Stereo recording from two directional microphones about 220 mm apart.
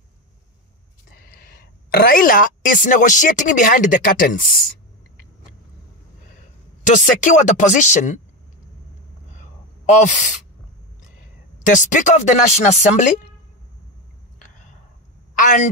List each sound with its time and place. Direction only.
1.1 s a woman's voice: 40° left (ahead or behind)
6.8 s speech: 35° left (ahead or behind)
9.4 s gasp: 35° left (ahead or behind)
11.1 s speech: 35° left (ahead or behind)
15.3 s a woman's voice: 35° left (ahead or behind)